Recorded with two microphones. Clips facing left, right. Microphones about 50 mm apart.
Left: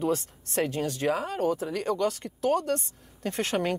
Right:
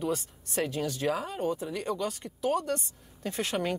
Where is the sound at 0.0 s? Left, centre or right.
Left.